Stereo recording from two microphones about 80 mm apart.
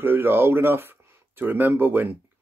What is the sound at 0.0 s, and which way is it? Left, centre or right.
Speech, right.